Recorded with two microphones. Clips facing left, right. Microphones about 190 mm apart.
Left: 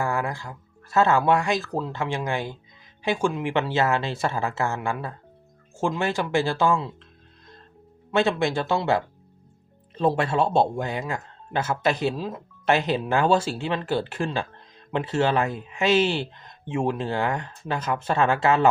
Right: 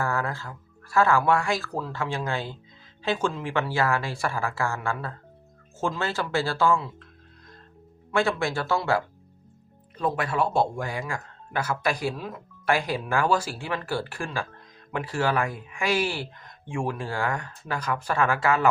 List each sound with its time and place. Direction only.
0.0 s speech: 15° left (ahead or behind)
8.1 s speech: 20° left (ahead or behind)